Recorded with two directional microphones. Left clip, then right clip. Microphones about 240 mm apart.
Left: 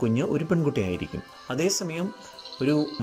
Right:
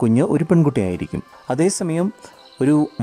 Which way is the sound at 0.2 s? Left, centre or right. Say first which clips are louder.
Right 8 dB; right.